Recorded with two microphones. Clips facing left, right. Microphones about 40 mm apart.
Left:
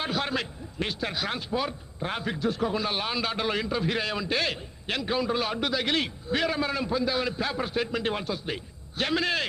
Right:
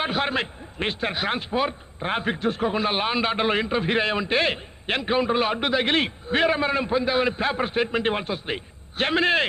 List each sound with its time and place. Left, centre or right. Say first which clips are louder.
0.0 s a man's voice: right 4 dB; right